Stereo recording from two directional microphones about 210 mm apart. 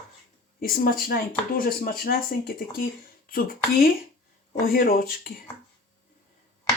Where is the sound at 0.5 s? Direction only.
45° left (ahead or behind).